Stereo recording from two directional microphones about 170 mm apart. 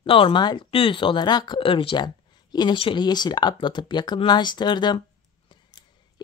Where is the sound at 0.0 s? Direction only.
30° left (ahead or behind).